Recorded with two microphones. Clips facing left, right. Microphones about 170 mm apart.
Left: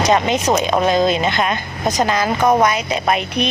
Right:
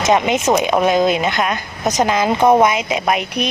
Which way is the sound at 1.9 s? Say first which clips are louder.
Right 2 dB; 20° right (ahead or behind).